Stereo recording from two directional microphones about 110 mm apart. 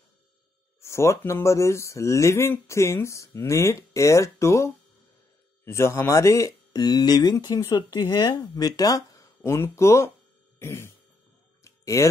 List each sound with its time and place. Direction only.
0.7 s speech: 25° left (ahead or behind)
6.8 s speech: 40° left (ahead or behind)
10.6 s music: 25° left (ahead or behind)
11.6 s a sound: 25° left (ahead or behind)